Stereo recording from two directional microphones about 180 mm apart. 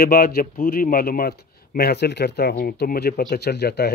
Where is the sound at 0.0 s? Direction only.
55° left (ahead or behind).